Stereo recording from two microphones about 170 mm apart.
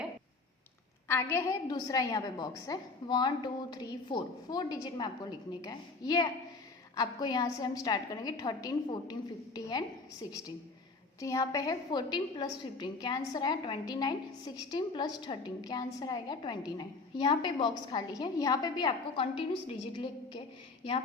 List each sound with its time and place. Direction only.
1.0 s a woman's voice: 15° left (ahead or behind); by 19.5 s 30° left (ahead or behind)